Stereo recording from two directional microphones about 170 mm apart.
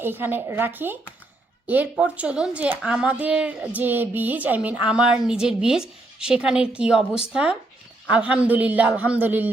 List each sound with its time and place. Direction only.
0.0 s speech: 10° right (ahead or behind)